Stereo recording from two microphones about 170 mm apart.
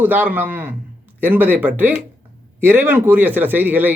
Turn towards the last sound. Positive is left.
turn(degrees=-10)  # may be behind; listen again after turning